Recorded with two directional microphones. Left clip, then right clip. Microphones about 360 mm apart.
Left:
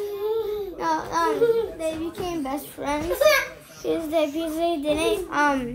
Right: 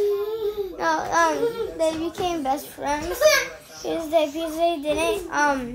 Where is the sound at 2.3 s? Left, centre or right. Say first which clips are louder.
Right 4 dB; centre.